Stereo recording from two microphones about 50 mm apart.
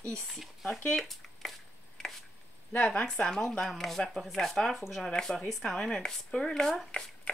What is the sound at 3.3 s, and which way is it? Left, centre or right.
A woman's voice, centre.